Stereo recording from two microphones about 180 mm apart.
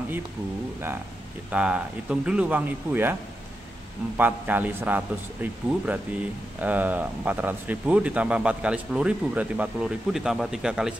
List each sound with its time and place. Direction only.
1.5 s speech: 5° right (ahead or behind)
4.2 s speech: 10° right (ahead or behind)